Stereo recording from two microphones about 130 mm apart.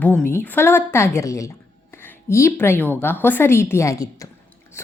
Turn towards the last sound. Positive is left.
turn(degrees=25)  # may be behind; listen again after turning